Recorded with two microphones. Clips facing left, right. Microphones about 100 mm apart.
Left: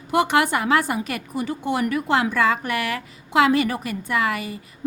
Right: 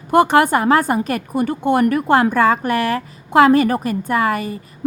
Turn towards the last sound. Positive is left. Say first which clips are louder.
# right 5 dB
turn(degrees=-40)  # may be behind; listen again after turning